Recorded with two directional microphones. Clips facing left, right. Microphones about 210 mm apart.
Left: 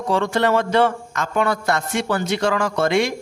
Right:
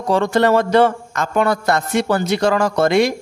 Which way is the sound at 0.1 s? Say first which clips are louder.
Right 4 dB; 40° right (ahead or behind).